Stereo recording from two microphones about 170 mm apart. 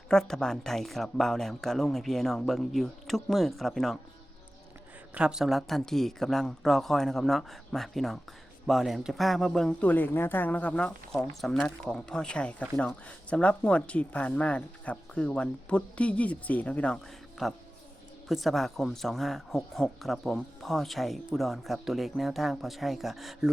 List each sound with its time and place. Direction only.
0.1 s speech: 5° left (ahead or behind)
5.1 s speech: 5° right (ahead or behind)